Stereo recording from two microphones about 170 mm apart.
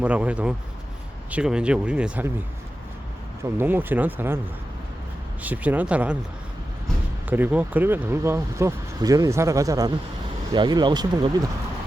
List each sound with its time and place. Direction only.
0.0 s speech: 10° right (ahead or behind)
3.6 s speech: 10° right (ahead or behind)
5.4 s speech: 10° right (ahead or behind)
7.3 s speech: 10° right (ahead or behind)